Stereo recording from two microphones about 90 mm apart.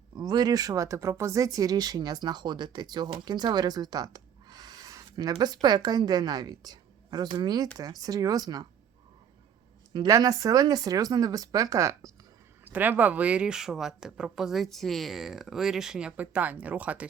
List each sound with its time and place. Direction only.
0.2 s speech: 50° right (ahead or behind)
5.4 s a woman's voice: 50° right (ahead or behind)
10.1 s a woman's voice: 40° right (ahead or behind)
12.6 s speech: 20° right (ahead or behind)